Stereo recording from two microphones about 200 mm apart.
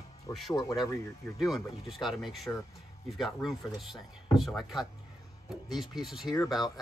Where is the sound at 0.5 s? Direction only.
20° left (ahead or behind).